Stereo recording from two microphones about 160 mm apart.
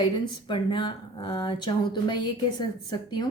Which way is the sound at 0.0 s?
30° left (ahead or behind).